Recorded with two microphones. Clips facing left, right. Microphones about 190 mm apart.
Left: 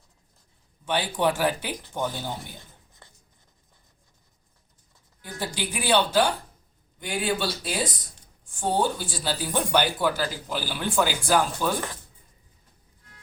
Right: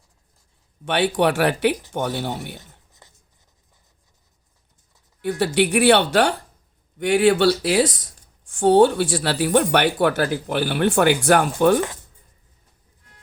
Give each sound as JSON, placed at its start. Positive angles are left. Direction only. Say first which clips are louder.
{"t": 0.9, "sound": "speech", "louder": "right 6 dB", "side_deg": -70}
{"t": 5.2, "sound": "speech", "louder": "right 13 dB", "side_deg": -70}